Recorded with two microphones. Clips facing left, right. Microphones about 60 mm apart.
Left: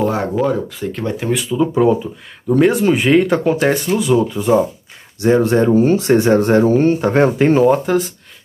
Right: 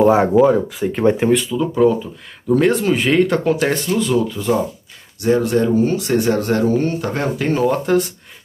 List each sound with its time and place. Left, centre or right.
0.0 s speech: centre
0.5 s speech: centre
1.0 s speech: right
1.5 s speech: centre
2.4 s speech: centre
5.2 s speech: left
7.6 s speech: centre